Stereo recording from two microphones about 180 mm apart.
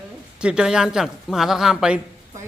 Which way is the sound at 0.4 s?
5° right (ahead or behind).